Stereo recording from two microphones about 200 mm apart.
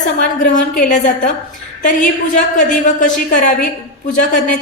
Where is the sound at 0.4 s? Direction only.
40° left (ahead or behind).